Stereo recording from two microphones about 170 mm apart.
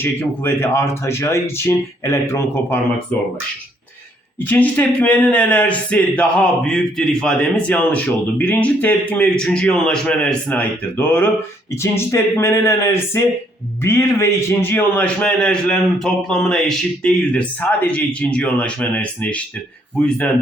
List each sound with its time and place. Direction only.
0.0 s speech: 15° left (ahead or behind)
4.4 s speech: 10° left (ahead or behind)